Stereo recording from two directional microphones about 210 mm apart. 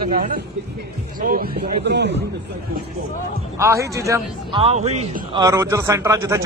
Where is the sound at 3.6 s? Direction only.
15° right (ahead or behind).